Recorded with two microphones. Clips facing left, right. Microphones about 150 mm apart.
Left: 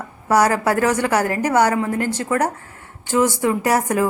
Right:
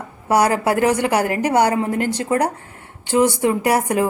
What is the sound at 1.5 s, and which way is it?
A woman's voice, 30° right (ahead or behind).